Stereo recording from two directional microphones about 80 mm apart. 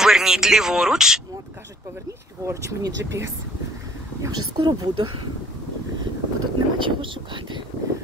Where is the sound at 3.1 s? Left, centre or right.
Right.